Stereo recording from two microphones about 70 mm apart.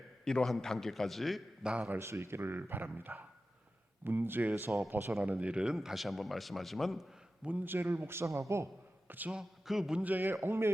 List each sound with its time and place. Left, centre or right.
0.3 s a man's voice: centre
1.6 s speech: centre
2.0 s a man's voice: right
5.2 s speech: centre
5.7 s a man's voice: centre
7.6 s a man's voice: right
9.0 s a man's voice: right
9.3 s a man's voice: centre
10.0 s a man's voice: right
10.4 s a man's voice: right